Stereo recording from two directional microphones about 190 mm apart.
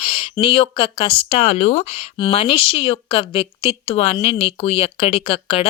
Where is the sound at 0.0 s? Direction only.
30° left (ahead or behind).